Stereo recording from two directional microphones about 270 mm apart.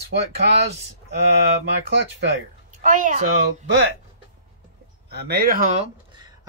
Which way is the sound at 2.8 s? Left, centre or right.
Right.